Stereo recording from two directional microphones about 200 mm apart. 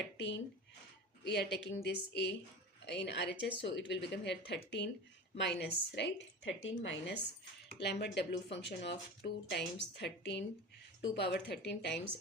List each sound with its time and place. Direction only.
0.2 s speech: 60° left (ahead or behind)
7.8 s speech: 55° left (ahead or behind)